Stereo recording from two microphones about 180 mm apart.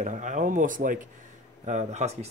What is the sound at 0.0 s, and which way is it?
Speech, 45° right (ahead or behind).